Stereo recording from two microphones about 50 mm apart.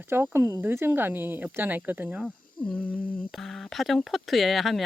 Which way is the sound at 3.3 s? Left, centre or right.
Centre.